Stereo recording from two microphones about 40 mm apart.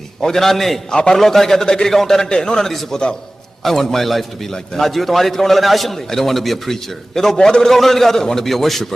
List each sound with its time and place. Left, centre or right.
0.2 s a man's voice: centre
0.9 s a man's voice: centre
1.2 s a man's voice: centre